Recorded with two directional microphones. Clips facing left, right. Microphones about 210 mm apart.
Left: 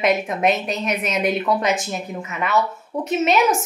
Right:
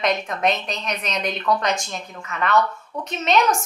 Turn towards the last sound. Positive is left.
turn(degrees=5)  # may be behind; listen again after turning